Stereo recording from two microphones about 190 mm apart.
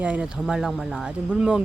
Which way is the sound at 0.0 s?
5° right (ahead or behind).